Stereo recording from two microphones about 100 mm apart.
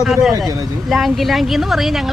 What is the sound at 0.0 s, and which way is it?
Speech, 5° right (ahead or behind).